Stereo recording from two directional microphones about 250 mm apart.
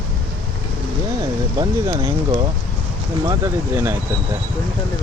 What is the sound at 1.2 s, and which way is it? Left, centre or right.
Speech, centre.